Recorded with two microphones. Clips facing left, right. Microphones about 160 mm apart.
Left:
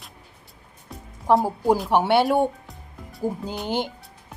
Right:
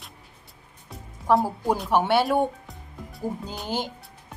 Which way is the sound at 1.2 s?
20° left (ahead or behind).